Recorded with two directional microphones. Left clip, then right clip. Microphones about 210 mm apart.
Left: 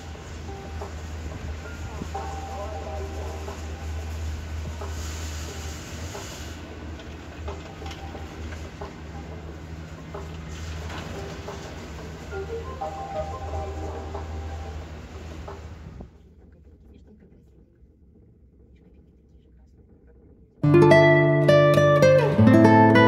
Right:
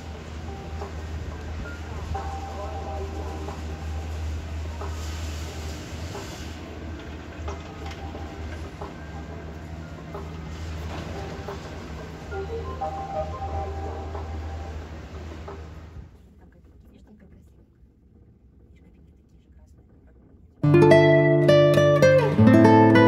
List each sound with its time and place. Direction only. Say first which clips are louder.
2.1 s vehicle: even; 35° left (ahead or behind)
4.7 s a sound: even; 35° left (ahead or behind)
6.1 s train: right 1 dB; 35° left (ahead or behind)
7.4 s a sound: even; 40° left (ahead or behind)
10.9 s vehicle: right 1 dB; 40° left (ahead or behind)
12.3 s train: right 1 dB; 40° left (ahead or behind)
15.5 s music: even; 40° left (ahead or behind)
20.6 s music: even; centre (ahead or behind)